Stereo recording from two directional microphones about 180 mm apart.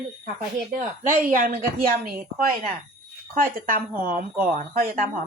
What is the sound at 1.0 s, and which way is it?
Speech, 50° right (ahead or behind).